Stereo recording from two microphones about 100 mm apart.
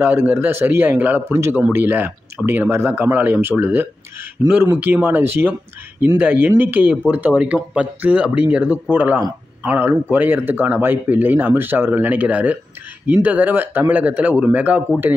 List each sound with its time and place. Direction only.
0.0 s speech: 20° right (ahead or behind)